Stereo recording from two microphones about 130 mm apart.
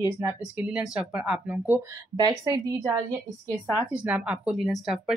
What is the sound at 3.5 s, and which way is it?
Speech, 10° right (ahead or behind).